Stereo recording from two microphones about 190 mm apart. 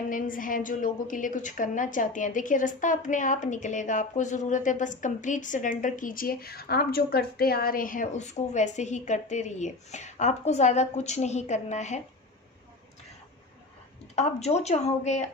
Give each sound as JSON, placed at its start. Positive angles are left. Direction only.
{"t": 0.1, "sound": "a woman's voice", "side_deg": 45}
{"t": 14.2, "sound": "a woman's voice", "side_deg": 35}